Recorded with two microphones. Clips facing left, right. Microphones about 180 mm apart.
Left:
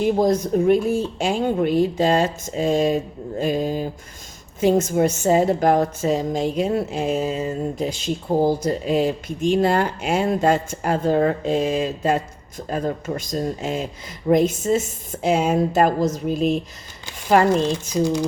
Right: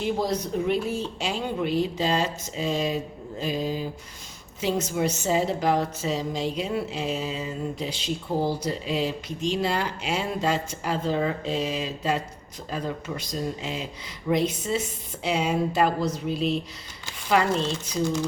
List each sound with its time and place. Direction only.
0.0 s a woman's voice: 50° left (ahead or behind)